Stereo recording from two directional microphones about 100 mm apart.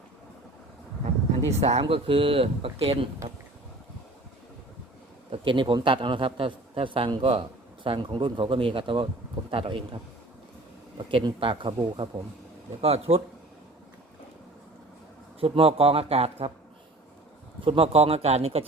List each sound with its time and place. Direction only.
1.5 s speech: 90° right; by 3.1 s 65° right (ahead or behind)
5.3 s a man's voice: 55° right (ahead or behind)
12.8 s speech: 90° right
15.4 s speech: 70° right (ahead or behind); by 16.5 s 90° right
17.7 s speech: 65° right (ahead or behind); by 18.6 s 90° right